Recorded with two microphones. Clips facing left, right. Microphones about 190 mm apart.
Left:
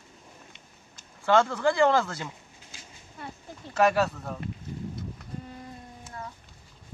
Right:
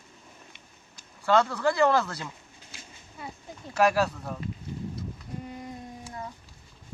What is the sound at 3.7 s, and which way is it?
Speech, centre (ahead or behind).